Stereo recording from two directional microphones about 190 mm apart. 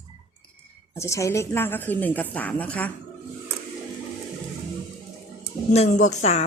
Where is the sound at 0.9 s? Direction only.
15° left (ahead or behind).